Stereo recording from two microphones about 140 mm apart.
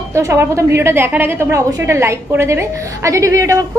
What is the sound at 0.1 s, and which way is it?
A woman's voice, 20° right (ahead or behind).